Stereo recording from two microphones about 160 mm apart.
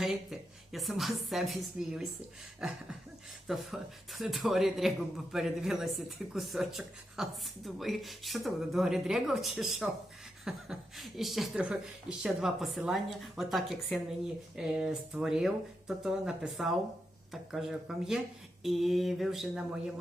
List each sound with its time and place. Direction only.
0.0 s speech: centre (ahead or behind)
3.4 s a man's voice: centre (ahead or behind)